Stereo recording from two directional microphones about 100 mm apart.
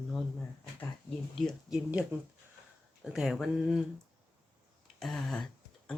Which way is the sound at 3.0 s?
5° right (ahead or behind).